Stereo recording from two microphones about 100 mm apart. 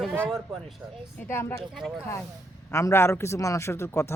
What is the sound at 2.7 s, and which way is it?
Speech, 30° left (ahead or behind).